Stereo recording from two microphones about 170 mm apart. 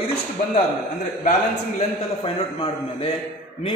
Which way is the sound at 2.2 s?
30° left (ahead or behind).